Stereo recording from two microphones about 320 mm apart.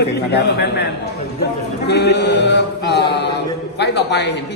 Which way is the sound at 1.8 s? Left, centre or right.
Left.